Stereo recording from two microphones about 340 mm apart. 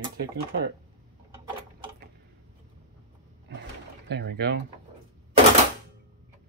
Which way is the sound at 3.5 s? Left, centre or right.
Right.